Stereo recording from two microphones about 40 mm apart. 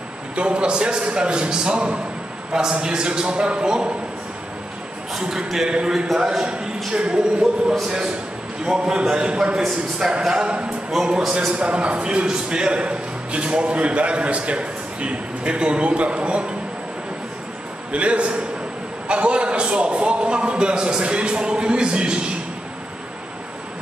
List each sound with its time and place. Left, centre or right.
0.4 s a man's voice: right
5.2 s a man's voice: centre
8.6 s a man's voice: centre
11.5 s a man's voice: right
17.9 s a man's voice: right